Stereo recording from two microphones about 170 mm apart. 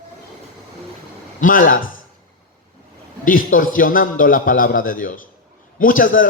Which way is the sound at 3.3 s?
55° left (ahead or behind).